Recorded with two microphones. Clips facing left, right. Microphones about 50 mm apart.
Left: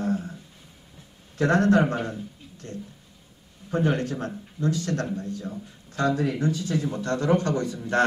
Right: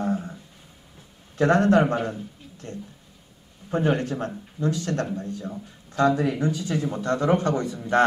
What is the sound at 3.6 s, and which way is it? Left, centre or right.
A man's voice, right.